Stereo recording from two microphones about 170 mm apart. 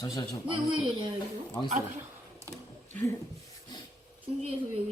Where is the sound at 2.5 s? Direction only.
15° left (ahead or behind).